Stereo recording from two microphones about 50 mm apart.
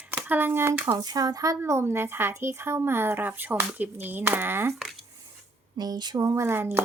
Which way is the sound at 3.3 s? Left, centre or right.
Right.